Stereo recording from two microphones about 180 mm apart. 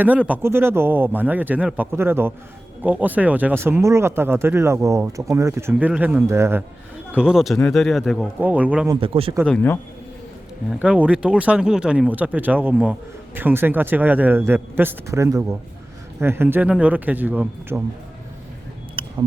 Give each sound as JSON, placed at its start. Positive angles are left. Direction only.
{"t": 0.0, "sound": "a man's voice", "side_deg": -10}
{"t": 8.9, "sound": "a man's voice", "side_deg": -30}
{"t": 9.5, "sound": "a man's voice", "side_deg": 10}
{"t": 10.7, "sound": "speech", "side_deg": -5}
{"t": 19.0, "sound": "a sound", "side_deg": -30}